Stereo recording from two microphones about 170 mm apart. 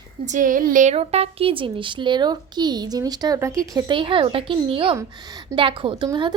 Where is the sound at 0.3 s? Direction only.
50° right (ahead or behind).